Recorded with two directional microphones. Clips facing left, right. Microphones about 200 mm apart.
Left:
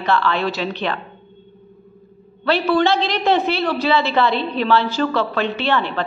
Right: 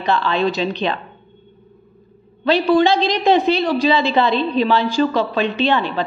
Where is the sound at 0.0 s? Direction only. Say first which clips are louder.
Right 1 dB; 15° right (ahead or behind).